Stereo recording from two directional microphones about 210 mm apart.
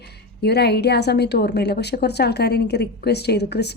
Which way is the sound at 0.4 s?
50° left (ahead or behind).